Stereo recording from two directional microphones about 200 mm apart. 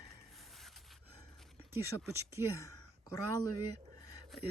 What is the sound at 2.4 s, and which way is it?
Speech, 10° right (ahead or behind).